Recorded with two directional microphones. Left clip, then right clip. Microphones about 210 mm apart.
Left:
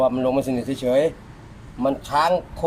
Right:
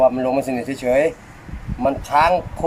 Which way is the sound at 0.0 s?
25° left (ahead or behind).